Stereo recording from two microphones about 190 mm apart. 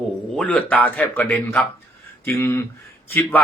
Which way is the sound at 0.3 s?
5° left (ahead or behind).